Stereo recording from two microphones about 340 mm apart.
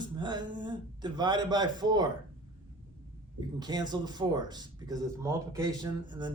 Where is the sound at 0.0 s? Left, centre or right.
Centre.